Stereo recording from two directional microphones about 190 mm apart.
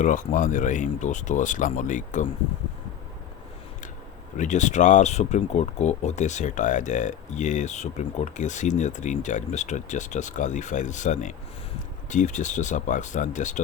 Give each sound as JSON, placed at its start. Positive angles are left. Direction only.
{"t": 0.0, "sound": "speech", "side_deg": 40}
{"t": 4.4, "sound": "speech", "side_deg": 40}